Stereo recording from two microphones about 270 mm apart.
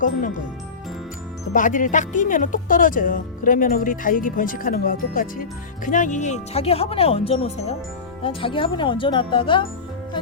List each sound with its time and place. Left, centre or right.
1.5 s speech: left